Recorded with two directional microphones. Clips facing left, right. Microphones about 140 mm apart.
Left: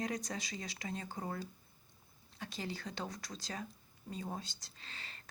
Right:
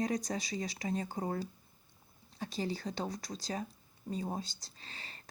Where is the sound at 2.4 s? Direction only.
35° right (ahead or behind).